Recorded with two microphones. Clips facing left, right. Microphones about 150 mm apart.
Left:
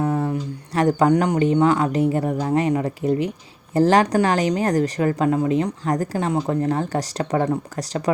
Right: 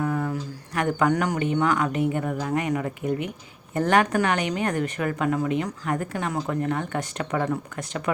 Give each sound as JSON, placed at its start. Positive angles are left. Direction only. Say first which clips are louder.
{"t": 0.0, "sound": "speech", "louder": "left 4 dB", "side_deg": 30}